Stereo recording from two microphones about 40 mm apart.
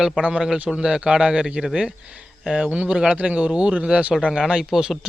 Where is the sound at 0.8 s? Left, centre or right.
Right.